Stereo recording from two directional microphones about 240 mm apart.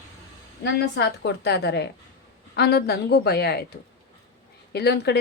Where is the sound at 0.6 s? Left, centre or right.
Left.